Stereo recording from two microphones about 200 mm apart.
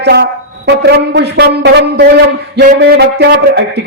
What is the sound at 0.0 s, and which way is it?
A man's voice, 60° right (ahead or behind).